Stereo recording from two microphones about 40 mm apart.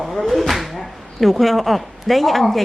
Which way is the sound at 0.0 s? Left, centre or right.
Centre.